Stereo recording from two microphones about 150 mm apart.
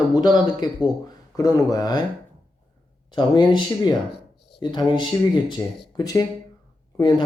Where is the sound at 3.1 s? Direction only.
30° left (ahead or behind).